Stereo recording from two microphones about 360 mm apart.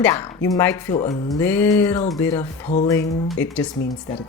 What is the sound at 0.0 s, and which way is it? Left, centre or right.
Speech, centre.